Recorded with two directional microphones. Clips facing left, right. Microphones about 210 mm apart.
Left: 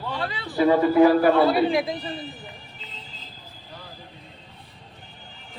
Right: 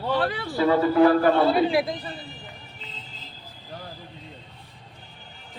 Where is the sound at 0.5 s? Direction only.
15° left (ahead or behind).